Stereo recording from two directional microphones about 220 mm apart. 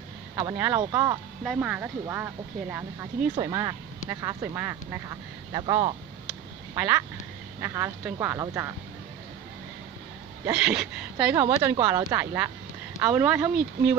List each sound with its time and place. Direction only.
0.4 s speech: 10° right (ahead or behind)
6.2 s quack: 10° right (ahead or behind)
7.6 s speech: 10° right (ahead or behind)
10.4 s speech: 5° right (ahead or behind)